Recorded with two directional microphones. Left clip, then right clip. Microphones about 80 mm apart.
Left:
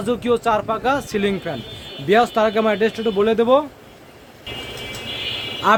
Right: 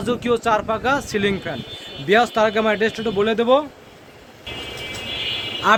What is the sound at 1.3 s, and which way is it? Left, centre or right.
Speech, centre.